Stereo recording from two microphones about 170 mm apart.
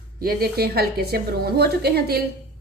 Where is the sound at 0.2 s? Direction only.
60° right (ahead or behind).